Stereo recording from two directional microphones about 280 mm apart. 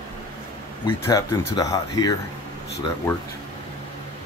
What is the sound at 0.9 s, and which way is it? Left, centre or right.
Speech, centre.